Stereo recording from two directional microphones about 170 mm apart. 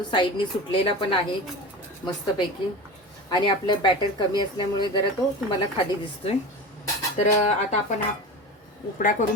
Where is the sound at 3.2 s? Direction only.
25° left (ahead or behind).